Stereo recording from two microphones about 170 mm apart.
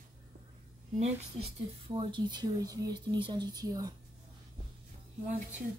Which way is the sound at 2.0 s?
30° right (ahead or behind).